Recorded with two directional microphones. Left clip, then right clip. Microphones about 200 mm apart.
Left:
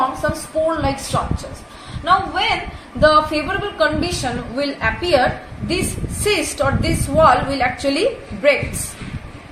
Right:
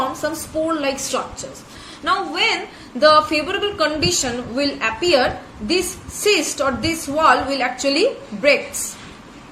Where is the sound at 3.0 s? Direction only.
60° right (ahead or behind).